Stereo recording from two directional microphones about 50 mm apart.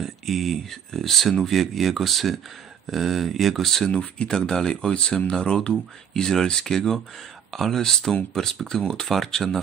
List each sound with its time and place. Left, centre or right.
0.0 s speech: centre
3.9 s speech: left
4.3 s speech: centre